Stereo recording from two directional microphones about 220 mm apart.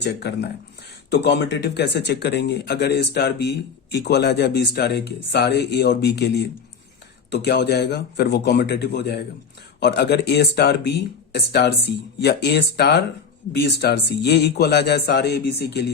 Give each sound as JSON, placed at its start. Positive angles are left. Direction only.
{"t": 0.0, "sound": "speech", "side_deg": 50}